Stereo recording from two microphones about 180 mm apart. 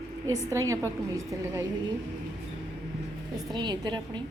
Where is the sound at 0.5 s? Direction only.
15° right (ahead or behind).